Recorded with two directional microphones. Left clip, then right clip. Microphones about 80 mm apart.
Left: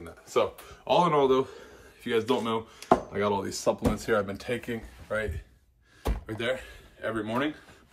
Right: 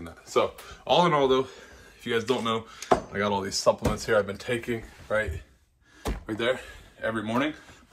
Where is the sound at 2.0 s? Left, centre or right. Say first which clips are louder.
Even; centre.